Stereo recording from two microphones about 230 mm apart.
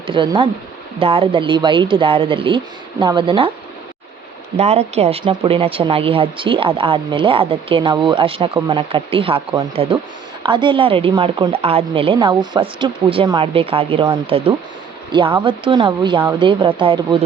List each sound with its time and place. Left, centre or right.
0.1 s a woman's voice: right
4.5 s a woman's voice: right